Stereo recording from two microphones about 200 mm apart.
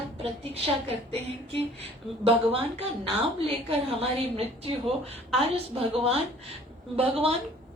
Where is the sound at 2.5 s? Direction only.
30° right (ahead or behind).